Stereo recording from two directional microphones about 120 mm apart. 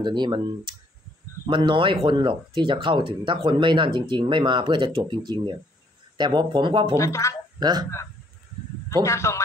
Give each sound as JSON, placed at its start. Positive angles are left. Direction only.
{"t": 0.0, "sound": "speech", "side_deg": -40}
{"t": 7.0, "sound": "speech", "side_deg": 25}
{"t": 7.5, "sound": "speech", "side_deg": -35}
{"t": 9.0, "sound": "speech", "side_deg": 25}